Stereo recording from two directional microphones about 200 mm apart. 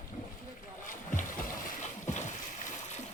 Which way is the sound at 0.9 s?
40° left (ahead or behind).